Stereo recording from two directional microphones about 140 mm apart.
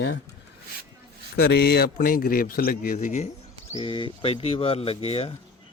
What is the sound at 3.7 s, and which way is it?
Speech, 40° left (ahead or behind).